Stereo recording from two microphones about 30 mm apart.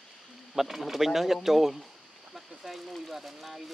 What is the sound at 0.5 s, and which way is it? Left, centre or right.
Speech, centre.